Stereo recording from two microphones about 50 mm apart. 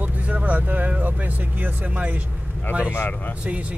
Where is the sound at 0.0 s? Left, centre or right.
Right.